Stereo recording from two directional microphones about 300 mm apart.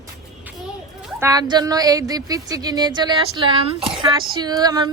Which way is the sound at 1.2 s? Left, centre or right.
Centre.